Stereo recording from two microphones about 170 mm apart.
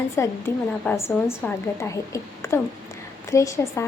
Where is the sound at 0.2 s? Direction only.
15° left (ahead or behind).